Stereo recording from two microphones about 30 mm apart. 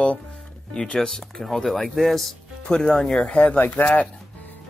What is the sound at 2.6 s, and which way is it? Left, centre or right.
Speech, left.